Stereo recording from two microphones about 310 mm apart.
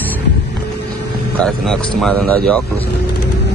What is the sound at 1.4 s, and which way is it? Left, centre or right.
Speech, centre.